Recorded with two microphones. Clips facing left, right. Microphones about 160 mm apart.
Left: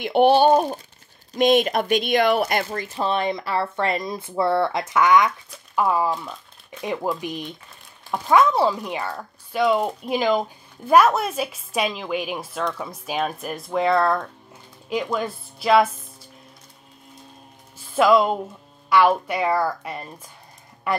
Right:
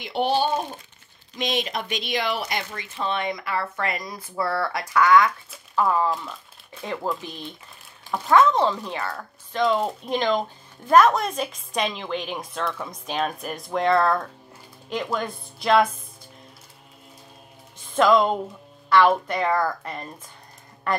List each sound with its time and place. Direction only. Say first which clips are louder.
0.0 s speech: left 7 dB; 55° left (ahead or behind); by 15.9 s 5° left (ahead or behind)
17.7 s speech: left 1 dB; 10° left (ahead or behind)